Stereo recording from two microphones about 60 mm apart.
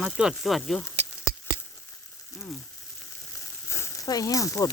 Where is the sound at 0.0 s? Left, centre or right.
Centre.